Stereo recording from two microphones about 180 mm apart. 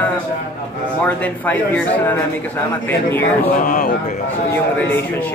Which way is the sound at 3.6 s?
45° left (ahead or behind).